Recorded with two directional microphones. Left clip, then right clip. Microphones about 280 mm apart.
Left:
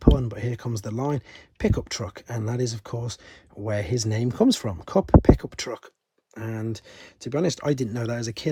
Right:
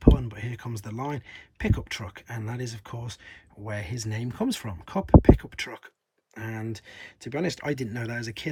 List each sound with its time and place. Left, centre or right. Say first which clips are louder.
0.2 s speech: left 6 dB; centre